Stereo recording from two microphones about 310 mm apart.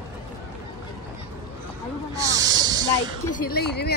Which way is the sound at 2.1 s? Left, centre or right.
Centre.